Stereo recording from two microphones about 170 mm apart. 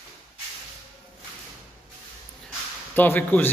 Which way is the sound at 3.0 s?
10° left (ahead or behind).